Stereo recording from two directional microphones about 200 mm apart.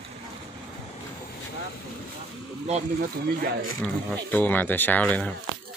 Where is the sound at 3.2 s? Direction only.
50° right (ahead or behind).